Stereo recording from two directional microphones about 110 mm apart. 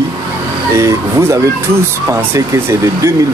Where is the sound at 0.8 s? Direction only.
25° right (ahead or behind).